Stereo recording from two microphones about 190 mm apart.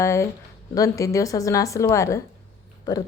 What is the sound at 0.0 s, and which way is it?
Speech, 15° left (ahead or behind).